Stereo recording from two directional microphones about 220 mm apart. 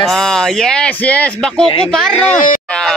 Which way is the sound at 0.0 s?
Centre (ahead or behind).